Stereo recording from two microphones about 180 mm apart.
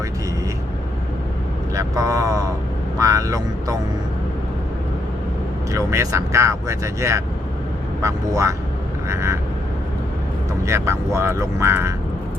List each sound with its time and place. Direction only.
1.7 s speech: 15° right (ahead or behind)
5.7 s speech: 20° right (ahead or behind)
10.7 s speech: 15° right (ahead or behind)